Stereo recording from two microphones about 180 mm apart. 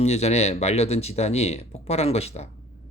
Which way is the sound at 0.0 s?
35° left (ahead or behind).